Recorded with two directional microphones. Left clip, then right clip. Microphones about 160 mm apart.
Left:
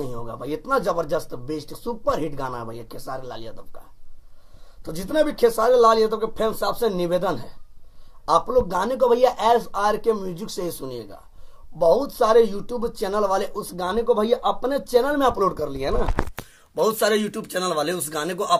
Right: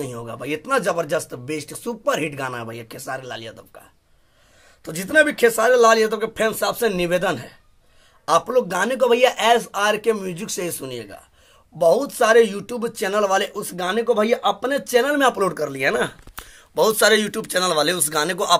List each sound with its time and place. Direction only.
0.0 s speech: 45° right (ahead or behind)
4.8 s speech: 45° right (ahead or behind)
15.5 s speech: 20° right (ahead or behind)
16.7 s a man's voice: 5° right (ahead or behind)